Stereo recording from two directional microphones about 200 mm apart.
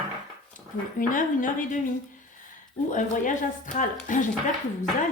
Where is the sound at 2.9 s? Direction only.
40° left (ahead or behind).